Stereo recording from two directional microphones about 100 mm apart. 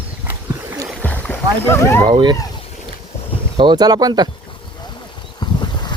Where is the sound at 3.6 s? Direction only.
45° right (ahead or behind).